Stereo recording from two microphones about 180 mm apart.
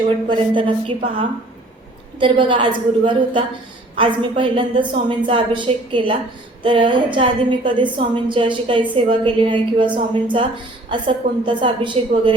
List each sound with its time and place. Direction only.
0.3 s a woman's voice: 25° right (ahead or behind)
2.1 s a woman's voice: 30° right (ahead or behind)